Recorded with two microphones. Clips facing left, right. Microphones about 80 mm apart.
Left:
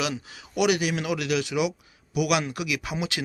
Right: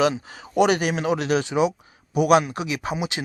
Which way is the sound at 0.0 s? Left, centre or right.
Right.